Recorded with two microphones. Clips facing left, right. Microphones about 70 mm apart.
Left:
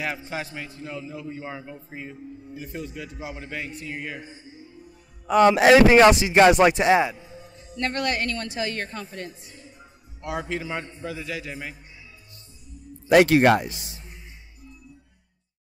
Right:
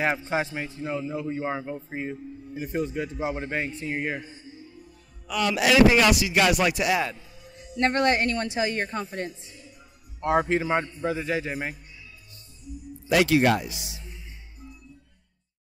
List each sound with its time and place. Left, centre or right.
0.3 s a man's voice: right
5.2 s a man's voice: left
7.1 s music: left
7.8 s a man's voice: right
9.5 s a sound: left
10.2 s a man's voice: right
13.1 s speech: left